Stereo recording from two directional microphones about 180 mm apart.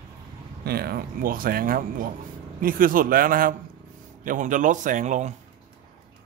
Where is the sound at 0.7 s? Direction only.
60° right (ahead or behind); by 5.3 s 45° right (ahead or behind).